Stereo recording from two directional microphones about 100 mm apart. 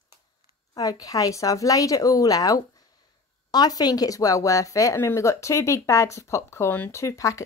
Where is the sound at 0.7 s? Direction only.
35° left (ahead or behind).